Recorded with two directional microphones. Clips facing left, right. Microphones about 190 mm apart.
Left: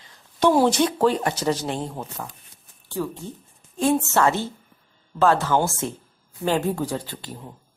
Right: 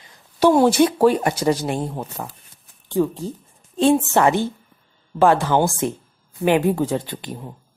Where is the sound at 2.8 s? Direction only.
20° right (ahead or behind).